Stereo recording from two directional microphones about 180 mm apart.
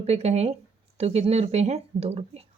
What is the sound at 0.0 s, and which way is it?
A woman's voice, 35° right (ahead or behind).